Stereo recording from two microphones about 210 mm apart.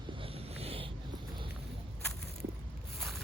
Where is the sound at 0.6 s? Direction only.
25° right (ahead or behind).